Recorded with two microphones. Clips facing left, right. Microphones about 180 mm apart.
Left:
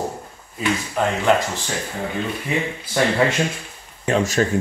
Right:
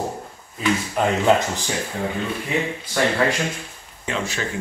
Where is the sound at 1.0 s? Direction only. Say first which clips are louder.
Even; 15° right (ahead or behind).